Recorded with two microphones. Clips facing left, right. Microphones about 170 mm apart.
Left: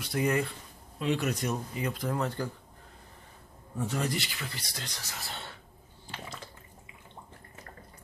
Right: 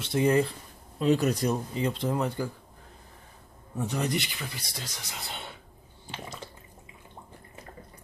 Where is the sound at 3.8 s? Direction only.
20° right (ahead or behind).